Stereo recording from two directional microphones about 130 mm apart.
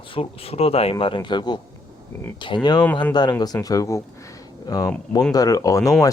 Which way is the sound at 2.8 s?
10° left (ahead or behind).